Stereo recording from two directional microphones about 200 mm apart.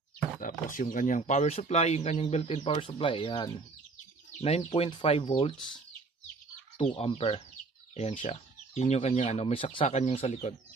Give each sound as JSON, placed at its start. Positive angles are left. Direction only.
{"t": 0.4, "sound": "speech", "side_deg": 40}
{"t": 6.8, "sound": "speech", "side_deg": 30}